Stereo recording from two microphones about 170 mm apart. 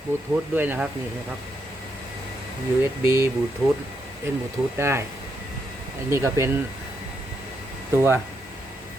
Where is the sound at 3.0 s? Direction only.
15° right (ahead or behind).